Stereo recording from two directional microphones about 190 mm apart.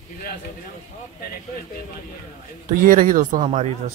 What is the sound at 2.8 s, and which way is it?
Speech, 45° right (ahead or behind).